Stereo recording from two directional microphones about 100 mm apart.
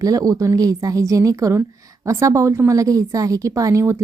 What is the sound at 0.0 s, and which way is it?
A woman's voice, 35° right (ahead or behind).